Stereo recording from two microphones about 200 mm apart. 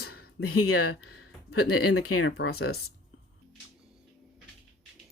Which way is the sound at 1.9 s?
90° left.